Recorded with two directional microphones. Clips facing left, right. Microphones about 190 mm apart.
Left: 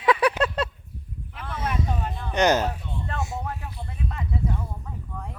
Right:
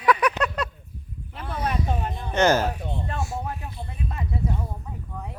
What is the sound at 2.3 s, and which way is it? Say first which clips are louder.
Speech: right 1 dB; 15° left (ahead or behind).